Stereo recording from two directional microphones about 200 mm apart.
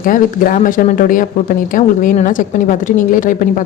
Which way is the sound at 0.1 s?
40° left (ahead or behind).